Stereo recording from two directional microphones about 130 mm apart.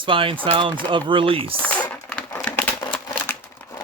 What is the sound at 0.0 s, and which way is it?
Speech, 40° right (ahead or behind).